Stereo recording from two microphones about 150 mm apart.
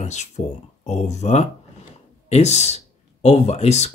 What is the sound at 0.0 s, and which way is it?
Speech, 50° left (ahead or behind).